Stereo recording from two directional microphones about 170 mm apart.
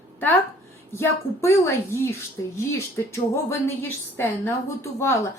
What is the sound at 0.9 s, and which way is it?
A woman's voice, 15° left (ahead or behind).